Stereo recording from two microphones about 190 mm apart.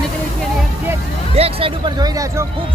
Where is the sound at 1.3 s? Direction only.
30° right (ahead or behind).